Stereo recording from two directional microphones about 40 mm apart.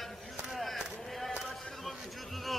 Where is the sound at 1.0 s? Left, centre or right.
Centre.